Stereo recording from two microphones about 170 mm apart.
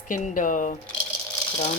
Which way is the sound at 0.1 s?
50° left (ahead or behind).